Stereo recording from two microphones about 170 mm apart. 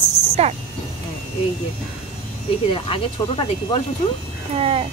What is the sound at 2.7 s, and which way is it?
Speech, 30° left (ahead or behind).